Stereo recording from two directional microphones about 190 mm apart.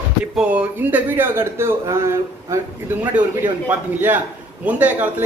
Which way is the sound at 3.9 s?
10° right (ahead or behind).